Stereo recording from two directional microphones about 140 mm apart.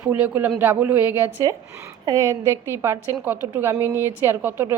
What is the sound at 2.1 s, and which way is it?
A woman's voice, 20° right (ahead or behind).